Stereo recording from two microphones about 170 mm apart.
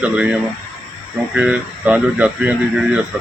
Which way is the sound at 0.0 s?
5° right (ahead or behind).